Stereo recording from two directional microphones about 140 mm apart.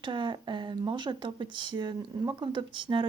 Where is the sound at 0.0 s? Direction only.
35° right (ahead or behind).